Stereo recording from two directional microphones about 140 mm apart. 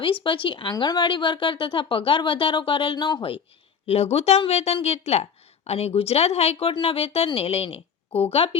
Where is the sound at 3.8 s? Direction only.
50° left (ahead or behind).